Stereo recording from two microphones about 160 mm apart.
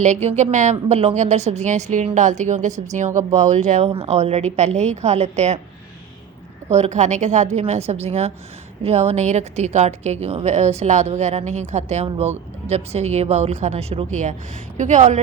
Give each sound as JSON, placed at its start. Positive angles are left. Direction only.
{"t": 0.0, "sound": "a woman's voice", "side_deg": -45}
{"t": 3.8, "sound": "a woman's voice", "side_deg": -35}
{"t": 6.7, "sound": "a woman's voice", "side_deg": -45}